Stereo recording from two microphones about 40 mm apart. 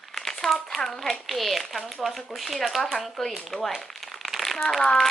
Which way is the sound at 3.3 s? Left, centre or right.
Centre.